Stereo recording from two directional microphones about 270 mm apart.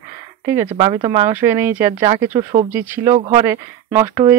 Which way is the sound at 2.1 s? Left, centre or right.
Right.